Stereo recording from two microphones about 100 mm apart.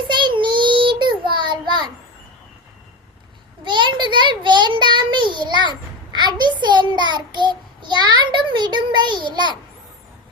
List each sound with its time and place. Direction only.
0.1 s child singing: 50° right (ahead or behind)
3.6 s child singing: 50° right (ahead or behind)